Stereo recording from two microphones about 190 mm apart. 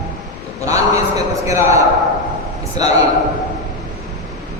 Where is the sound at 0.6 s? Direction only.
15° right (ahead or behind).